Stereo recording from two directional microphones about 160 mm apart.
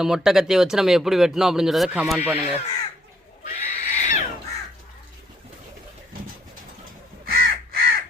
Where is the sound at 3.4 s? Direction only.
50° left (ahead or behind).